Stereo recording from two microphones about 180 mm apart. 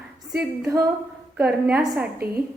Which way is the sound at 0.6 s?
15° right (ahead or behind).